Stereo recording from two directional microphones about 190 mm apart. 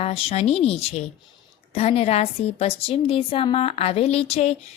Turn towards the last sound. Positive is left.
turn(degrees=35)  # may be behind; listen again after turning